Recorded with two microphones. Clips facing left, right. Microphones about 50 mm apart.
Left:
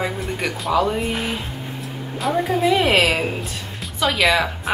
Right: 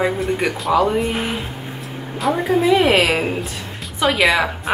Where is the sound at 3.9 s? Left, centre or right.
Centre.